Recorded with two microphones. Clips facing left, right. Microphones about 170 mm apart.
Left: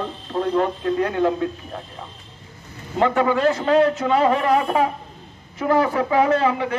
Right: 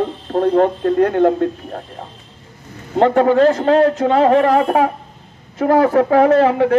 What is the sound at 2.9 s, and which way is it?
A man's voice, 50° right (ahead or behind).